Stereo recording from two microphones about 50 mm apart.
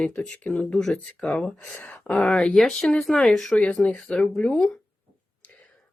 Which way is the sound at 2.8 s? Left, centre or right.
Centre.